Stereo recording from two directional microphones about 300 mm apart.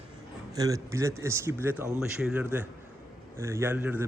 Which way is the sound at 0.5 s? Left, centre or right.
Centre.